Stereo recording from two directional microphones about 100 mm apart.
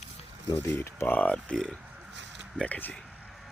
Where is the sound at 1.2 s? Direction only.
10° left (ahead or behind).